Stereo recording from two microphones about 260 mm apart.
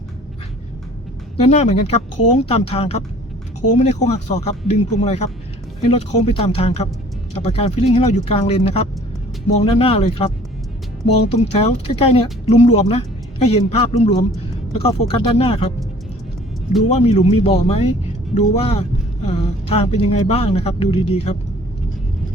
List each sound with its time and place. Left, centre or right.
1.4 s a man's voice: left
11.3 s a man's voice: left
16.9 s a man's voice: left